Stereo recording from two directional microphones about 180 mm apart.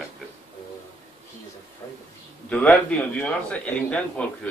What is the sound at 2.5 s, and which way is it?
A man's voice, 5° left (ahead or behind).